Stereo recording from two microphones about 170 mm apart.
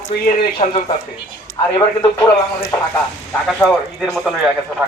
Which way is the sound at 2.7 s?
15° left (ahead or behind).